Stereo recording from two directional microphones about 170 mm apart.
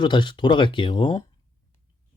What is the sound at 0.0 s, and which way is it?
Speech, 25° left (ahead or behind).